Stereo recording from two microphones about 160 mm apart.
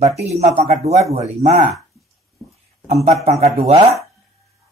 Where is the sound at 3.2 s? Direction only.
40° right (ahead or behind).